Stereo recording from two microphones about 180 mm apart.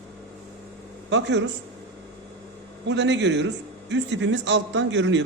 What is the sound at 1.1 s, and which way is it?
Speech, 80° right.